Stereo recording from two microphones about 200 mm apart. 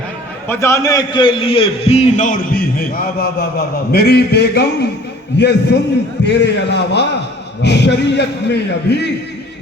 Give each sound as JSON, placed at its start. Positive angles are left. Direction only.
{"t": 0.4, "sound": "a man's voice", "side_deg": 10}